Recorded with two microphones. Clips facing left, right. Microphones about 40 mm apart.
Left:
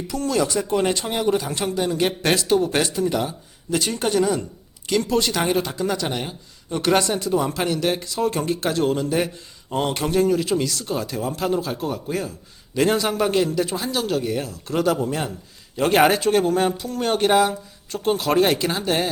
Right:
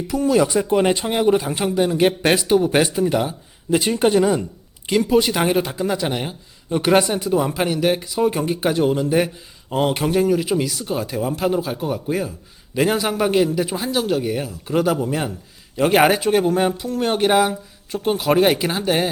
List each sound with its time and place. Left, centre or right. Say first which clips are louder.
0.1 s speech: right 5 dB; centre